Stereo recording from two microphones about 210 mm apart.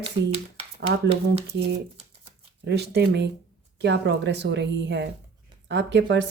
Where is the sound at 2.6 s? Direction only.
50° right (ahead or behind).